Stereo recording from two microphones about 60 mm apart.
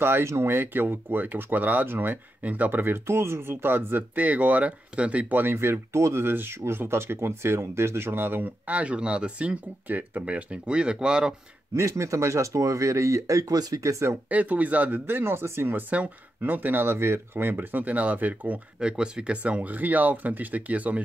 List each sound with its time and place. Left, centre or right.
0.0 s speech: right
3.1 s speech: right; by 9.6 s centre
9.8 s speech: right; by 11.3 s centre
11.7 s speech: right
14.3 s speech: right
15.0 s speech: right
15.9 s speech: right
18.8 s speech: centre